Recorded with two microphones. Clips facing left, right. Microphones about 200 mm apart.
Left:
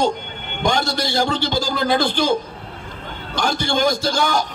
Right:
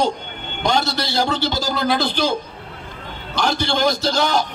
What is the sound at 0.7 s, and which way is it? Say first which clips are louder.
A man's voice: even; 50° left (ahead or behind).